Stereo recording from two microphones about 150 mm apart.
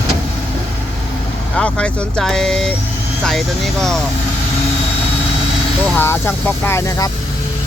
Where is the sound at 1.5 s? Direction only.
5° left (ahead or behind).